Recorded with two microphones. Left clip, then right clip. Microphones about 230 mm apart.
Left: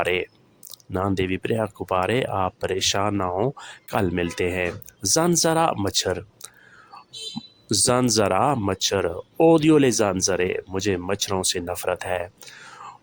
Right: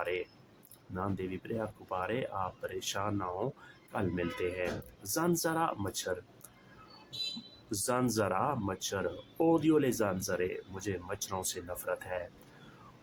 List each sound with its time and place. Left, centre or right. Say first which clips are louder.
0.0 s speech: left 12 dB; left
7.7 s speech: left 12 dB; left